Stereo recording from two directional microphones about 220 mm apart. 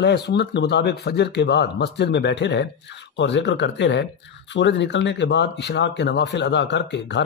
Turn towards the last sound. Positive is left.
turn(degrees=55)  # may be behind; listen again after turning